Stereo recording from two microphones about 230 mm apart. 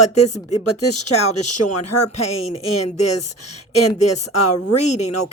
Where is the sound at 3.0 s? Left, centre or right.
Left.